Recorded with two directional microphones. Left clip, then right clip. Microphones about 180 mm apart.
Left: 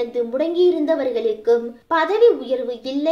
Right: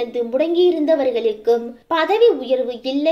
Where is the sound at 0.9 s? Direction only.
30° right (ahead or behind).